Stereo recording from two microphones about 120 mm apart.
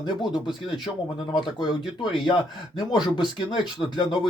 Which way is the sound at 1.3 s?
40° left (ahead or behind).